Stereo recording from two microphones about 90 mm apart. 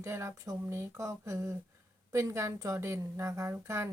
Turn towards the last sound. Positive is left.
turn(degrees=-30)  # may be behind; listen again after turning